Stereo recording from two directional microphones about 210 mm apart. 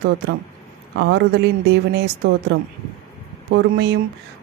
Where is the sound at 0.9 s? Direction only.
55° right (ahead or behind).